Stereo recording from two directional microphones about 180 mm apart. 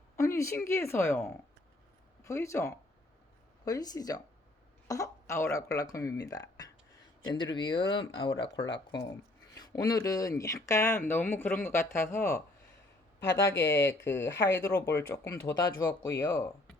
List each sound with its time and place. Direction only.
0.2 s speech: 15° left (ahead or behind)